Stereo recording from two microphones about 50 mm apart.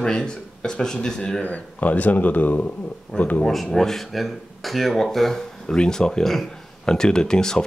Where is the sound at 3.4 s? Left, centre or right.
Centre.